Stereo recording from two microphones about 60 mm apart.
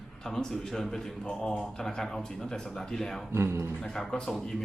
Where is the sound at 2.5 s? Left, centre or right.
Centre.